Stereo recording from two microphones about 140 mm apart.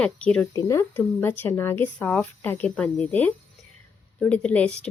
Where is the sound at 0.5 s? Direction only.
20° left (ahead or behind).